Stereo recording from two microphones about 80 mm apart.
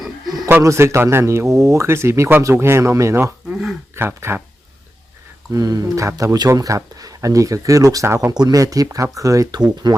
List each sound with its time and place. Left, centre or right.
0.6 s speech: right
5.5 s speech: right
8.0 s speech: right
8.3 s speech: right